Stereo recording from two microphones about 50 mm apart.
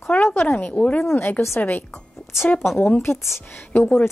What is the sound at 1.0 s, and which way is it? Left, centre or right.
A woman's voice, left.